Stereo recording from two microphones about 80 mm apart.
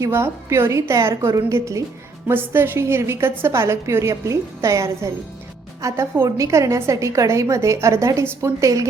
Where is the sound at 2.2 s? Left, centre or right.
Right.